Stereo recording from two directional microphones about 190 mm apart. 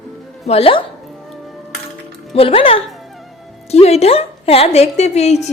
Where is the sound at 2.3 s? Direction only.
30° left (ahead or behind).